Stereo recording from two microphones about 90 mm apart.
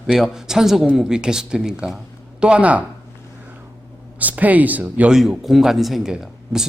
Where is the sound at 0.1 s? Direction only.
5° right (ahead or behind).